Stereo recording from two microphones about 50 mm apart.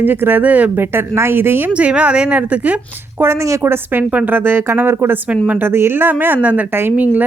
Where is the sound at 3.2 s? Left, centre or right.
Right.